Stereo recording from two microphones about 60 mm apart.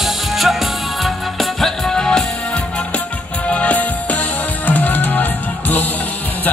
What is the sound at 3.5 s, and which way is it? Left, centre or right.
Music, left.